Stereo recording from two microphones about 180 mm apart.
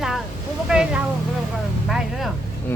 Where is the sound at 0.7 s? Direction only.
5° right (ahead or behind).